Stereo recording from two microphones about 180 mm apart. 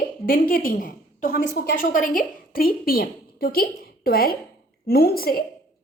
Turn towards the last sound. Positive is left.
turn(degrees=55)  # may be behind; listen again after turning